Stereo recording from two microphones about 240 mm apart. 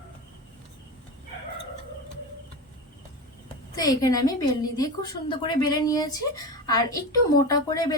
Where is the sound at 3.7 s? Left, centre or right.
Centre.